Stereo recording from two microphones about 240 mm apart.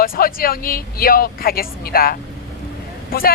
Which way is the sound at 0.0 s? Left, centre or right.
Left.